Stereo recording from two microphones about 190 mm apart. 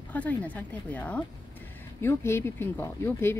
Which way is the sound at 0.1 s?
5° left (ahead or behind).